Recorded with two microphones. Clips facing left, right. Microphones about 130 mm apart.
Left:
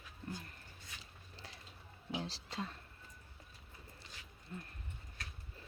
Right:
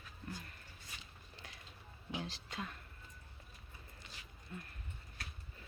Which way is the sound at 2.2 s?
35° left (ahead or behind).